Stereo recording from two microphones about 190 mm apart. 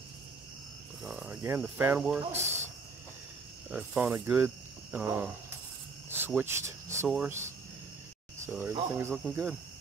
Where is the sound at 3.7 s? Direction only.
10° right (ahead or behind).